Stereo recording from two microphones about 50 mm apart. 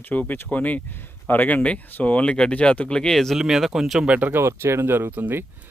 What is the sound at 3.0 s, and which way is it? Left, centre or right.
Speech, centre.